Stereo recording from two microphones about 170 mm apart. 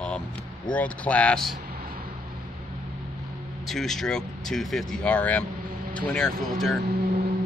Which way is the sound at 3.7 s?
Centre (ahead or behind).